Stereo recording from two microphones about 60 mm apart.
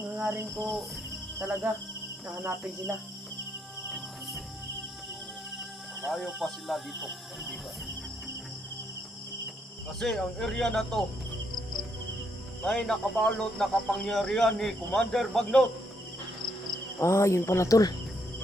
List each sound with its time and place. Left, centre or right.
1.4 s speech: right
3.8 s cricket: centre
6.1 s speech: centre
10.0 s speech: centre
12.6 s speech: centre
17.0 s speech: left